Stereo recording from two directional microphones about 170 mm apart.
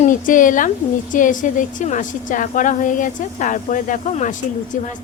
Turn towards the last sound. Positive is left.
turn(degrees=50)  # may be behind; listen again after turning